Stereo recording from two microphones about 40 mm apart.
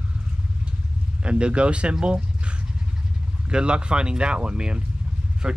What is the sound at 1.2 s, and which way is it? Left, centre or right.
Speech, right.